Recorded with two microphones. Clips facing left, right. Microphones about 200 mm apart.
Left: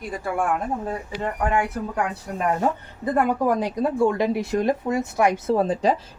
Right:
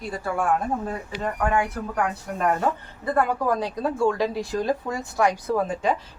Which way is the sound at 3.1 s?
20° left (ahead or behind).